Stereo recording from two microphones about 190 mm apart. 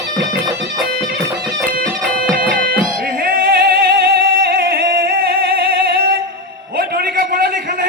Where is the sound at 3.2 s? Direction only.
50° right (ahead or behind).